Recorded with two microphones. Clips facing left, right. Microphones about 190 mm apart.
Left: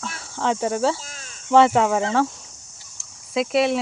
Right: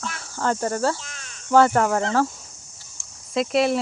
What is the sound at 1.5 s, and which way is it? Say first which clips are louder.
Speech: left 1 dB; centre (ahead or behind).